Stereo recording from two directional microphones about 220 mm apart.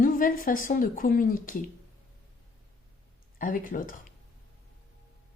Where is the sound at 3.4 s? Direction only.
40° left (ahead or behind).